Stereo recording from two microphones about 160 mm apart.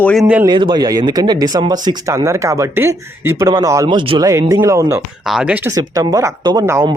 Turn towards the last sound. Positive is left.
turn(degrees=-20)  # may be behind; listen again after turning